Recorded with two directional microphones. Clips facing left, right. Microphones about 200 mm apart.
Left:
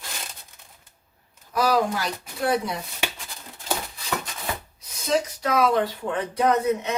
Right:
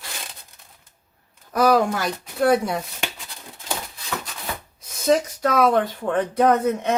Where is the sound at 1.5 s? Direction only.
50° right (ahead or behind).